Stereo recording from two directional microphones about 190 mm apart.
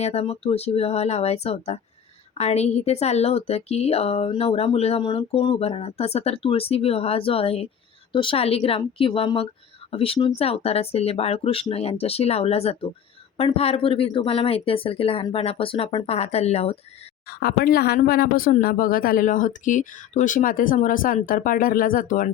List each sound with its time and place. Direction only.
0.0 s a woman's voice: 35° left (ahead or behind)
17.2 s speech: 55° left (ahead or behind)